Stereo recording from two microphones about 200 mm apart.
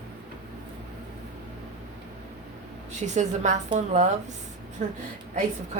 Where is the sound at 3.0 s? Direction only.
35° right (ahead or behind).